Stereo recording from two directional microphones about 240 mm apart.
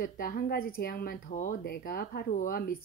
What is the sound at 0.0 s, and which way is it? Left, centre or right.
Speech, left.